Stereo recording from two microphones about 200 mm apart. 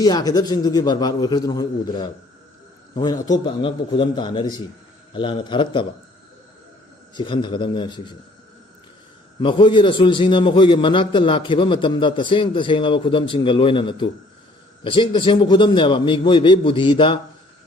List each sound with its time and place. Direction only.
0.0 s a man's voice: 20° left (ahead or behind)
7.2 s a man's voice: 25° left (ahead or behind)
9.4 s a man's voice: 25° left (ahead or behind)